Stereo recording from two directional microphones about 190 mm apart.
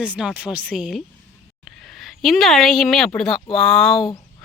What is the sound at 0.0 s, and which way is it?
Speech, 5° right (ahead or behind).